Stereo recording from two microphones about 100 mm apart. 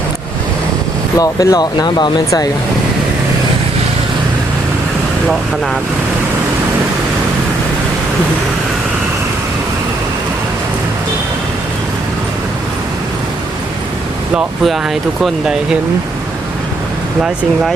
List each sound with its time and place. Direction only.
1.2 s speech: 35° left (ahead or behind)
14.3 s speech: centre (ahead or behind)